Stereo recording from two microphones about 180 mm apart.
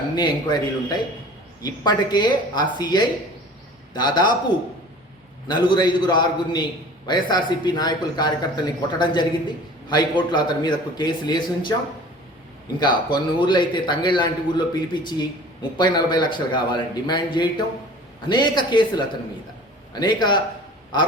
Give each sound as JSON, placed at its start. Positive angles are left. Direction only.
{"t": 0.2, "sound": "a man's voice", "side_deg": 25}
{"t": 5.5, "sound": "a man's voice", "side_deg": 25}
{"t": 12.8, "sound": "a man's voice", "side_deg": 25}